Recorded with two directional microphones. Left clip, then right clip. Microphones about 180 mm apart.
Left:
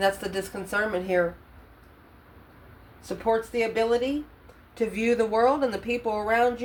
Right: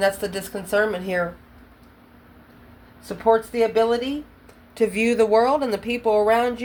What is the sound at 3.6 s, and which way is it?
A woman's voice, 55° right (ahead or behind).